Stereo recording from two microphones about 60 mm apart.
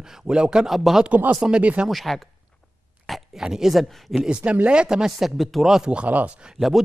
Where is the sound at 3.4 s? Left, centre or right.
Centre.